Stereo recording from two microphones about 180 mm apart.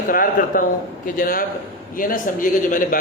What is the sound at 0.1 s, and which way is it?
A man's voice, 50° left (ahead or behind).